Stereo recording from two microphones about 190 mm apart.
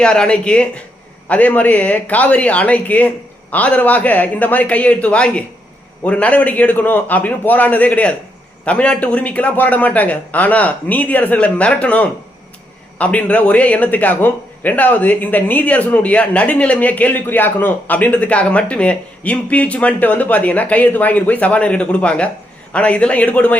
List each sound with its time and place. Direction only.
0.0 s a man's voice: 5° left (ahead or behind)